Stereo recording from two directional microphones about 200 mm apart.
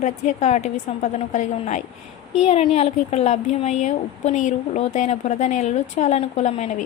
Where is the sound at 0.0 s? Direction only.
35° left (ahead or behind).